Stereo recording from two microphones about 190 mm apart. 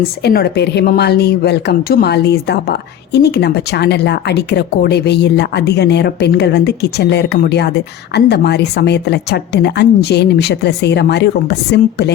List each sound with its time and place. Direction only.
0.2 s a woman's voice: 55° left (ahead or behind)